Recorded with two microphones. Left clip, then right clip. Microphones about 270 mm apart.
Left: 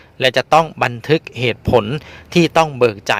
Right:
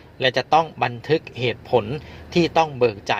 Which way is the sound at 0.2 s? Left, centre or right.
Left.